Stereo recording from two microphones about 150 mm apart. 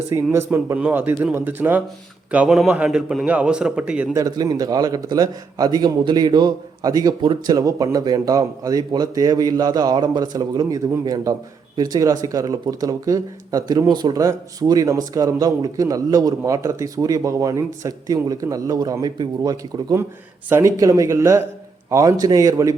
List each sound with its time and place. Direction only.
0.1 s a man's voice: 20° right (ahead or behind)
4.1 s a man's voice: 25° right (ahead or behind)